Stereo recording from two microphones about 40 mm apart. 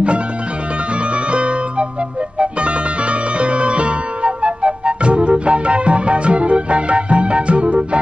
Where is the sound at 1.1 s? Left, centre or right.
Right.